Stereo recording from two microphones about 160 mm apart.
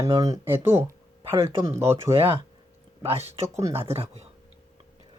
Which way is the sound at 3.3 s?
15° right (ahead or behind).